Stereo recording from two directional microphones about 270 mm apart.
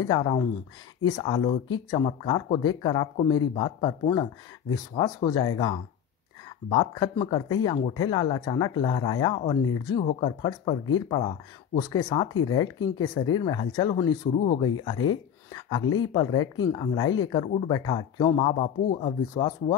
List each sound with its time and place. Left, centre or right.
0.0 s speech: centre
6.7 s speech: centre
15.0 s a sound: centre
15.8 s speech: left
16.1 s speech: centre